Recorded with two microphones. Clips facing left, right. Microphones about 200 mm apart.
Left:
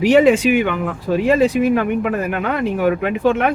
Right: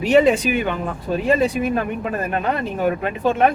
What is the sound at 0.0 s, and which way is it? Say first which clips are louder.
Speech: left 3 dB; 90° left.